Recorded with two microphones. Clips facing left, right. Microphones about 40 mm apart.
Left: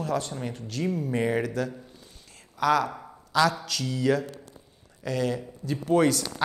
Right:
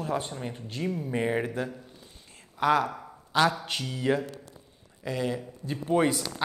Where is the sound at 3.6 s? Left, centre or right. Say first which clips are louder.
Left 3 dB; right.